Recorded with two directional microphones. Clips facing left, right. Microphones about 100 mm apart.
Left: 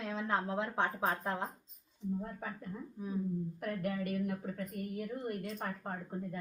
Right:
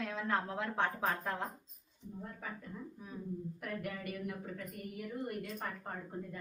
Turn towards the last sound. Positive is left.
turn(degrees=40)  # may be behind; listen again after turning